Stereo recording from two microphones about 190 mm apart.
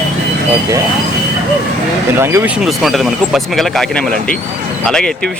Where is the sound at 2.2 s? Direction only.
15° right (ahead or behind).